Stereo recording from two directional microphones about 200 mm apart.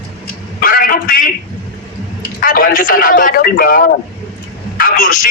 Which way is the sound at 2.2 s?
45° left (ahead or behind).